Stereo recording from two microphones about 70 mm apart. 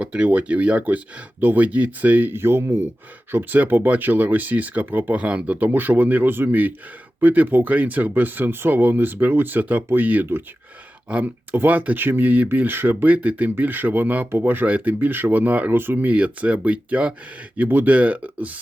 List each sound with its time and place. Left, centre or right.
0.0 s speech: centre